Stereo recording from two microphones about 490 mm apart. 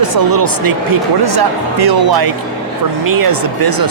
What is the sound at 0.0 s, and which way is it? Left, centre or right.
Speech, right.